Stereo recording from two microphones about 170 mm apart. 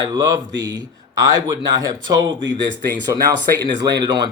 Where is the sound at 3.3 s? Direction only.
10° left (ahead or behind).